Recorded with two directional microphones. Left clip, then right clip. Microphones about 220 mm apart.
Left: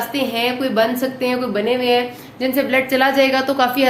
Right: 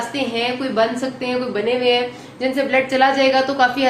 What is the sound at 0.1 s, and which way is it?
A woman's voice, 50° left (ahead or behind).